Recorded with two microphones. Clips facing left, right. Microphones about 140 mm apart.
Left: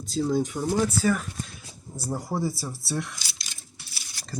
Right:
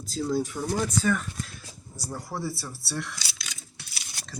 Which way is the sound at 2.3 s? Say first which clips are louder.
Left 5 dB; 20° left (ahead or behind).